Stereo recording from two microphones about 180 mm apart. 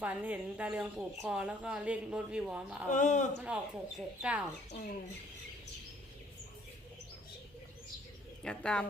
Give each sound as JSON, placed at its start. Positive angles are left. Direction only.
{"t": 0.0, "sound": "speech", "side_deg": -10}
{"t": 2.9, "sound": "speech", "side_deg": 40}
{"t": 3.4, "sound": "speech", "side_deg": -5}
{"t": 8.4, "sound": "speech", "side_deg": 5}